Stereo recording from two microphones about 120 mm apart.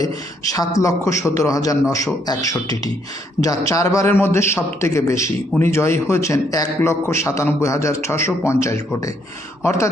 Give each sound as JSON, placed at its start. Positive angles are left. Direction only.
{"t": 0.5, "sound": "a man's voice", "side_deg": 30}